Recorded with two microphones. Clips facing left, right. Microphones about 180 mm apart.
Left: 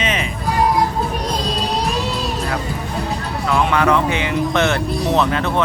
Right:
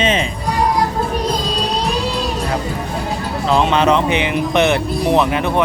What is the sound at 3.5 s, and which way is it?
Speech, 20° right (ahead or behind).